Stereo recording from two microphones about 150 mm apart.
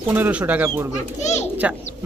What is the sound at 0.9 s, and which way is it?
Speech, 50° left (ahead or behind).